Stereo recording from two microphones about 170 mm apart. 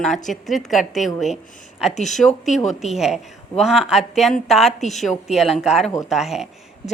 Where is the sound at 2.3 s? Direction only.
45° left (ahead or behind).